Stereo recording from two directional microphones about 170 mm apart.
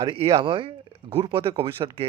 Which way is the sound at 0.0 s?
30° right (ahead or behind).